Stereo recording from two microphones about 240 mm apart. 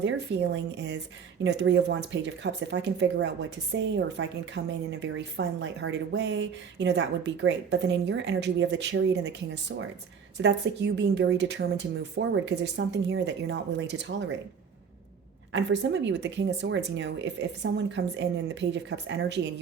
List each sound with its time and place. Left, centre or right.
0.0 s speech: right
15.5 s speech: right